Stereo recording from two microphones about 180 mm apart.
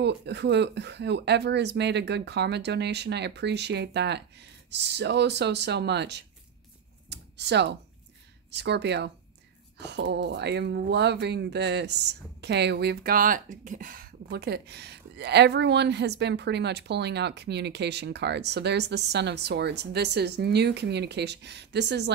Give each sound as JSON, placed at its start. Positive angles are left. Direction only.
{"t": 0.0, "sound": "speech", "side_deg": -70}